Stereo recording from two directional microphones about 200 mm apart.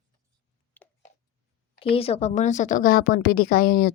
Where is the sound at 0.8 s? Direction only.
10° left (ahead or behind).